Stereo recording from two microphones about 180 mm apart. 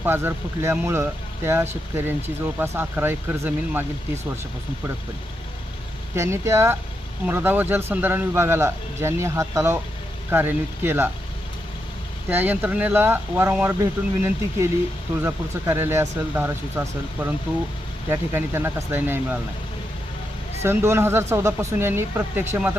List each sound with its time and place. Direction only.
0.0 s speech: 10° right (ahead or behind)
6.1 s speech: 15° right (ahead or behind)
12.3 s speech: 10° right (ahead or behind)
18.1 s speech: 15° right (ahead or behind)
20.6 s speech: 15° right (ahead or behind)